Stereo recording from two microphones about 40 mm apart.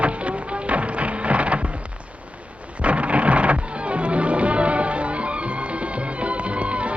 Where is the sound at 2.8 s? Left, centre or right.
Right.